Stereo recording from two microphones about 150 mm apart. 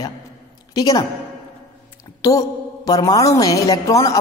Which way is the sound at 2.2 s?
25° left (ahead or behind).